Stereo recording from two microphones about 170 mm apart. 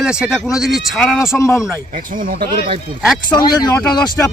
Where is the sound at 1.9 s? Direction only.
55° right (ahead or behind).